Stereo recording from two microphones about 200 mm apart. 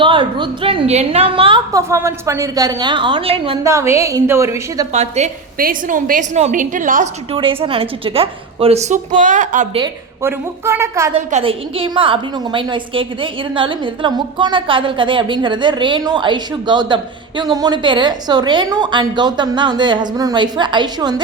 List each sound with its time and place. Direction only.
0.0 s a woman's voice: 25° right (ahead or behind)
3.6 s a woman's voice: 15° right (ahead or behind)
4.9 s a woman's voice: 35° right (ahead or behind)
7.3 s a woman's voice: 25° right (ahead or behind)
10.2 s a woman's voice: 10° right (ahead or behind)
11.3 s a woman's voice: 30° right (ahead or behind)